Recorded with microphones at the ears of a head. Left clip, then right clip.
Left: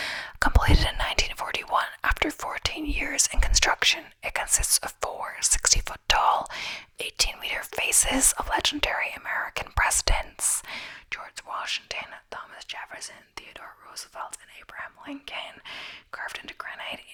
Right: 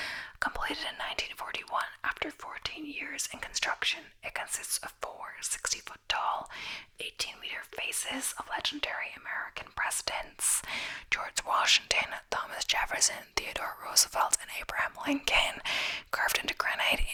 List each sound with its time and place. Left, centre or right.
0.0 s speech: left
11.3 s speech: right